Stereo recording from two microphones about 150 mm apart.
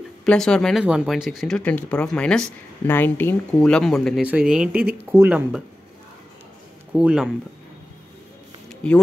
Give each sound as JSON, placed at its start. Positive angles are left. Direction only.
{"t": 0.2, "sound": "speech", "side_deg": 5}
{"t": 4.2, "sound": "speech", "side_deg": -5}
{"t": 6.9, "sound": "speech", "side_deg": -5}
{"t": 8.6, "sound": "a sound", "side_deg": 5}